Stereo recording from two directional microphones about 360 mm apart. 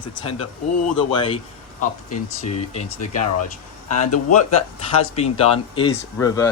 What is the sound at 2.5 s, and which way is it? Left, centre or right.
Speech, centre.